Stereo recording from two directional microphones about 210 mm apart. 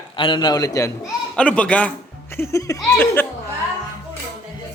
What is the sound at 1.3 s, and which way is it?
Speech, 5° left (ahead or behind).